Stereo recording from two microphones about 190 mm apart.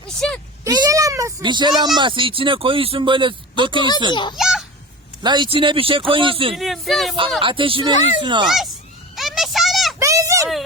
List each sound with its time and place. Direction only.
0.2 s a sound: 5° left (ahead or behind)
0.6 s speech: 15° right (ahead or behind)
4.1 s a child's voice: 25° left (ahead or behind)
4.4 s children playing: centre (ahead or behind)
5.2 s speech: 25° right (ahead or behind)
6.5 s speech: centre (ahead or behind)
7.4 s speech: 25° right (ahead or behind)
7.9 s a child's voice: 40° left (ahead or behind)
8.2 s speech: 25° right (ahead or behind)
8.4 s speech: centre (ahead or behind)
9.1 s a sound: centre (ahead or behind)
10.0 s a sound: 15° right (ahead or behind)